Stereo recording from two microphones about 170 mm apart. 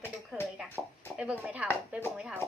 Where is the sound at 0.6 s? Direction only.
10° left (ahead or behind).